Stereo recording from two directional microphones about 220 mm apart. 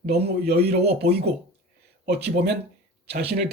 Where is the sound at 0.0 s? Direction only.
45° right (ahead or behind).